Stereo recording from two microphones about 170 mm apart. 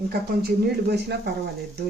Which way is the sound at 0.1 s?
65° right (ahead or behind).